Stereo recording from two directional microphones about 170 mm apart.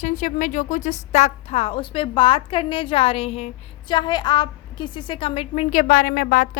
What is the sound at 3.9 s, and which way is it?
A woman's voice, 25° left (ahead or behind).